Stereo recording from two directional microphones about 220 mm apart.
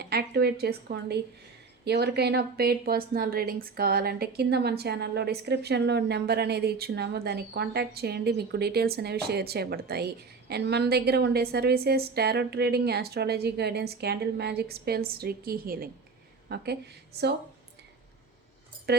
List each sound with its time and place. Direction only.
0.0 s a woman's voice: 45° right (ahead or behind)
18.9 s a woman's voice: 45° right (ahead or behind)